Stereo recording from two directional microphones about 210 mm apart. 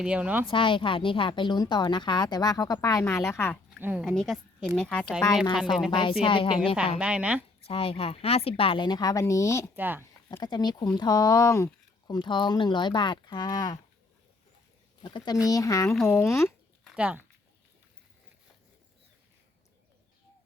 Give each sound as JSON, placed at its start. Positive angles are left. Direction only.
{"t": 0.0, "sound": "a woman's voice", "side_deg": -5}
{"t": 0.4, "sound": "speech", "side_deg": 25}
{"t": 3.8, "sound": "speech", "side_deg": -10}
{"t": 4.0, "sound": "a woman's voice", "side_deg": 0}
{"t": 5.9, "sound": "speech", "side_deg": 25}
{"t": 7.0, "sound": "a woman's voice", "side_deg": -5}
{"t": 7.6, "sound": "speech", "side_deg": 25}
{"t": 9.7, "sound": "speech", "side_deg": -10}
{"t": 10.2, "sound": "speech", "side_deg": 20}
{"t": 15.0, "sound": "speech", "side_deg": 20}
{"t": 16.8, "sound": "a sound", "side_deg": -5}